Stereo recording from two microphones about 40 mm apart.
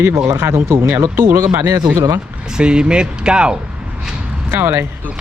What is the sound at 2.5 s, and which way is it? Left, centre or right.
Speech, right.